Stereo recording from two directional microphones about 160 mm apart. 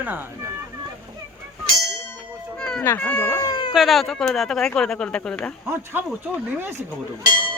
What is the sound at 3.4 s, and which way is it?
Cat, 30° left (ahead or behind).